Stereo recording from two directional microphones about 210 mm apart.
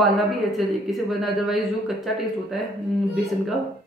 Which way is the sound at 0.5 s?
Centre (ahead or behind).